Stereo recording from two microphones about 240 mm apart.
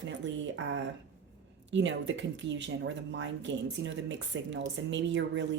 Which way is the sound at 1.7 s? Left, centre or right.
Right.